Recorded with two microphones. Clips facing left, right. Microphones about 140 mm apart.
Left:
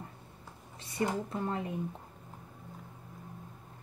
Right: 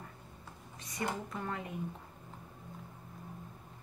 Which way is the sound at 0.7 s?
30° left (ahead or behind).